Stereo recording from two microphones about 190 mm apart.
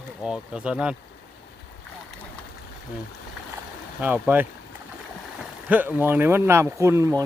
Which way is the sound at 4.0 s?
10° right (ahead or behind).